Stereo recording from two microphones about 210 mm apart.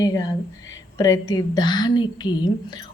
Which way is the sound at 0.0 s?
15° left (ahead or behind).